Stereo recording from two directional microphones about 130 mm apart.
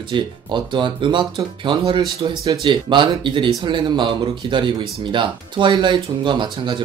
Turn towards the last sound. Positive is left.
turn(degrees=-35)  # may be behind; listen again after turning